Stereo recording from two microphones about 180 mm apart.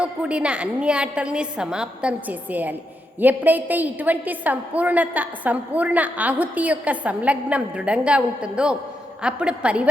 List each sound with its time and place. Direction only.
0.0 s a woman's voice: 5° right (ahead or behind)